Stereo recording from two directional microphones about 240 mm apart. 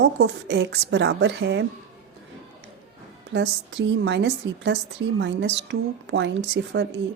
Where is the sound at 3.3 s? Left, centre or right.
Right.